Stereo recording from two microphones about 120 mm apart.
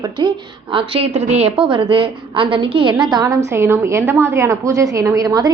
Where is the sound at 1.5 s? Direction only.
45° right (ahead or behind).